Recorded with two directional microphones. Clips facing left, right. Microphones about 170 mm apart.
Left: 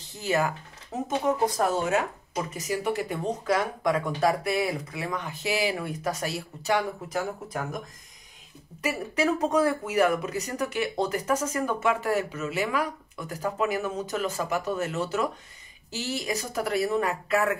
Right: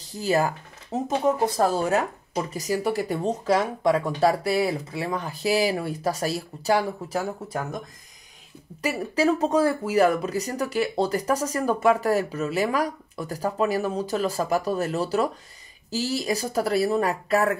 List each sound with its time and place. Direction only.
0.0 s speech: 35° right (ahead or behind)
8.8 s speech: 30° right (ahead or behind)